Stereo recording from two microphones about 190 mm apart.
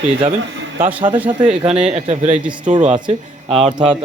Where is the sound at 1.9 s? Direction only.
35° right (ahead or behind).